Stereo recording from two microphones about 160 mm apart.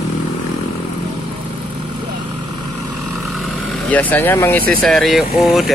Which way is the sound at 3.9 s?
10° left (ahead or behind).